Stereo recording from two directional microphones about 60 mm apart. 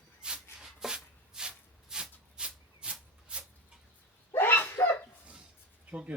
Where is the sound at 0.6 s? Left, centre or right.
Centre.